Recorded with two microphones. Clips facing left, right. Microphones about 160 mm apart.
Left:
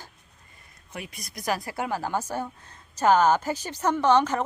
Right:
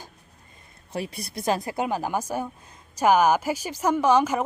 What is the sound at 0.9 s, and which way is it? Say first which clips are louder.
A woman's voice: right 7 dB; 30° right (ahead or behind).